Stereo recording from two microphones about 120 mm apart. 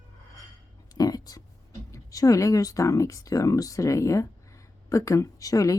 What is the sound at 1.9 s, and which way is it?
Speech, 30° left (ahead or behind).